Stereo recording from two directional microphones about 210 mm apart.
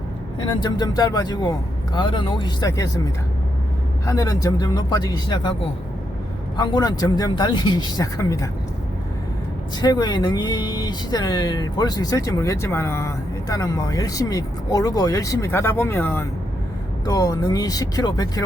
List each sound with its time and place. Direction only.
0.3 s speech: 20° left (ahead or behind)
6.6 s speech: 20° left (ahead or behind)
9.8 s speech: 20° left (ahead or behind)